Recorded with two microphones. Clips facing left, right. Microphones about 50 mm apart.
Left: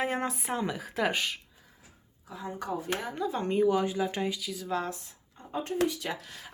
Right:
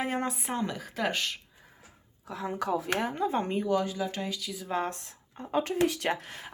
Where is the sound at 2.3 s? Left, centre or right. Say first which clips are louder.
Right 4 dB; right.